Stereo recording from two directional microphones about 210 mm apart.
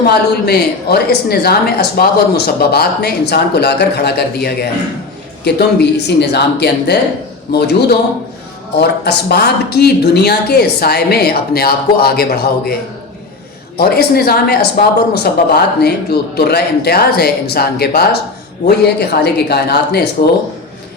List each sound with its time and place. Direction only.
0.0 s a woman's voice: 50° left (ahead or behind)
13.7 s a woman's voice: 50° left (ahead or behind)